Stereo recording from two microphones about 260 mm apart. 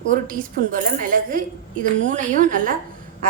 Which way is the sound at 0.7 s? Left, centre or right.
Right.